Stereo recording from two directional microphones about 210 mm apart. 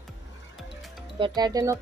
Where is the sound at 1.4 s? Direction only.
20° right (ahead or behind).